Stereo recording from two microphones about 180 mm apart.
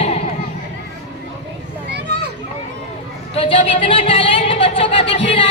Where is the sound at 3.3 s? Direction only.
30° left (ahead or behind).